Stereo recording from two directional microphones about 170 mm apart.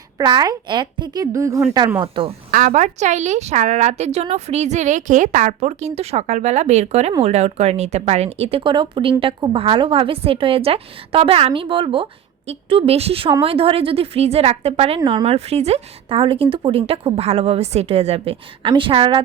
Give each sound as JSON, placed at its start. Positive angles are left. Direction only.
{"t": 0.2, "sound": "a woman's voice", "side_deg": -25}
{"t": 2.0, "sound": "a woman's voice", "side_deg": -30}
{"t": 2.5, "sound": "a woman's voice", "side_deg": -55}